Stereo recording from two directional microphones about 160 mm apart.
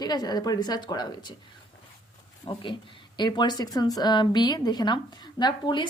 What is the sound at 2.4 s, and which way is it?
Speech, 30° left (ahead or behind).